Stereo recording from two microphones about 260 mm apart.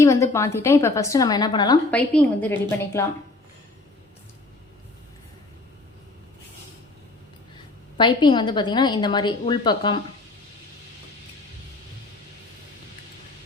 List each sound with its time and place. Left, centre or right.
0.0 s a woman's voice: centre
7.9 s a woman's voice: centre